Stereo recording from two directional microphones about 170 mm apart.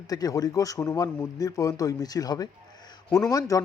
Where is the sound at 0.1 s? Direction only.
20° left (ahead or behind).